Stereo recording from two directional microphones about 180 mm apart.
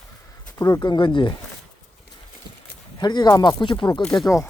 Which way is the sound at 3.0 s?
25° left (ahead or behind).